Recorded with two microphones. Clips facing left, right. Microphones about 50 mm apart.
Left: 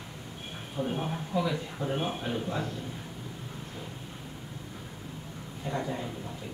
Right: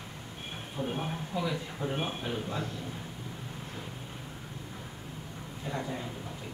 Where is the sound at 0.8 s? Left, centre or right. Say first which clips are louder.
Left 3 dB; centre.